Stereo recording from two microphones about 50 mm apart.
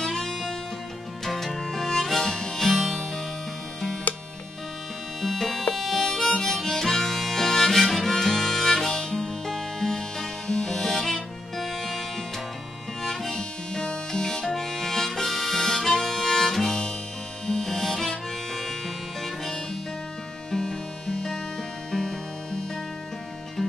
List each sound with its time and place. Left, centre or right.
0.0 s music: centre
1.2 s harmonica: centre
4.1 s music: left
5.2 s music: centre
5.8 s harmonica: centre
13.0 s harmonica: centre